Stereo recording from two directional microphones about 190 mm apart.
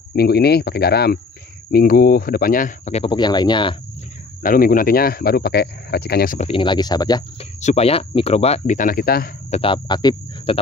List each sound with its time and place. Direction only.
0.1 s speech: 55° left (ahead or behind); by 3.7 s 25° left (ahead or behind)
4.4 s speech: 45° left (ahead or behind)
6.4 s speech: 25° left (ahead or behind)
7.6 s speech: 35° left (ahead or behind); by 9.3 s 50° left (ahead or behind)
9.5 s speech: 30° left (ahead or behind)